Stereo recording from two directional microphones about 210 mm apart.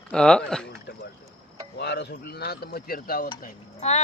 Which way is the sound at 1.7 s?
55° left (ahead or behind).